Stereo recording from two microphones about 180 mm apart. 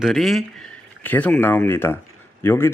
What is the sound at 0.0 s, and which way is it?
Speech, centre (ahead or behind).